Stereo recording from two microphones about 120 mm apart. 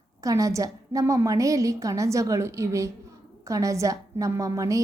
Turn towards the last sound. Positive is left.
turn(degrees=-25)  # may be behind; listen again after turning